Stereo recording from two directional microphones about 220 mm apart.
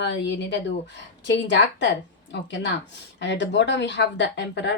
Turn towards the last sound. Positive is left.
turn(degrees=50)  # may be behind; listen again after turning